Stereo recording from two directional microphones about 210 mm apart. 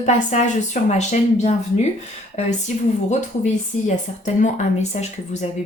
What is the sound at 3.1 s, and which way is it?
Speech, 35° left (ahead or behind).